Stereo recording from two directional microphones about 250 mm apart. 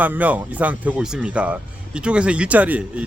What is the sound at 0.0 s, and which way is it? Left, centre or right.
Speech, centre.